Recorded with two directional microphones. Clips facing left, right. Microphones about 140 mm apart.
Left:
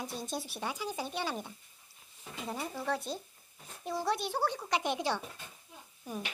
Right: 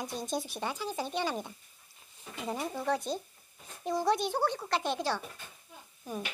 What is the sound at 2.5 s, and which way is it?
Speech, 10° right (ahead or behind).